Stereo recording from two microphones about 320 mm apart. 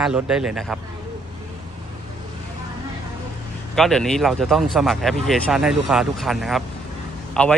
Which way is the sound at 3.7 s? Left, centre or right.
Centre.